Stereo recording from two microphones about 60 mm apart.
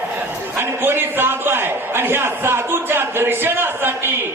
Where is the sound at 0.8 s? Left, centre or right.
Right.